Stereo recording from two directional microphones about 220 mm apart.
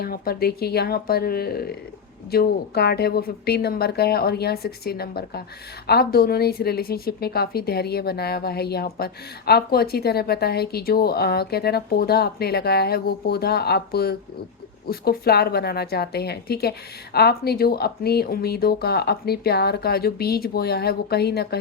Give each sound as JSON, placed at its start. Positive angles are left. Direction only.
{"t": 0.0, "sound": "speech", "side_deg": 45}